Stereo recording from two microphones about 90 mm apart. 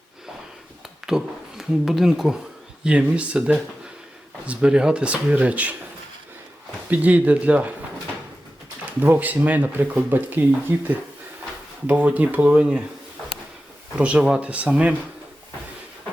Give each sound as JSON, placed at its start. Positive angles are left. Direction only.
{"t": 1.0, "sound": "speech", "side_deg": -5}
{"t": 6.9, "sound": "speech", "side_deg": -15}
{"t": 9.0, "sound": "speech", "side_deg": -20}
{"t": 14.0, "sound": "speech", "side_deg": -15}